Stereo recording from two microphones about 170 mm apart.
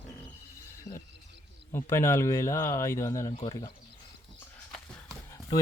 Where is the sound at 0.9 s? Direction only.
15° left (ahead or behind).